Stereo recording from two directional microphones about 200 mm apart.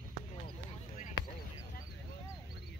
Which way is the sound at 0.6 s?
35° left (ahead or behind).